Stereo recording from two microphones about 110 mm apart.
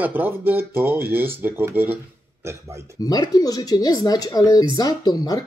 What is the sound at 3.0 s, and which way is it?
Speech, 35° left (ahead or behind).